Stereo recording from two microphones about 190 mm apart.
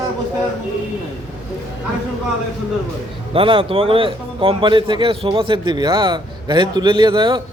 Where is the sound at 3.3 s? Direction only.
25° right (ahead or behind).